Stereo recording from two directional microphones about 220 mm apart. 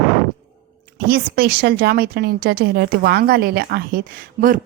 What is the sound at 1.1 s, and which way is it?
A woman's voice, 45° right (ahead or behind).